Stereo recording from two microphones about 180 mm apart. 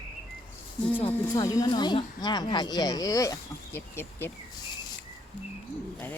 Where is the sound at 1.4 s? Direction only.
20° left (ahead or behind).